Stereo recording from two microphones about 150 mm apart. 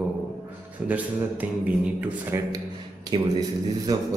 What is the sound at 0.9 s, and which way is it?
A man's voice, 10° right (ahead or behind).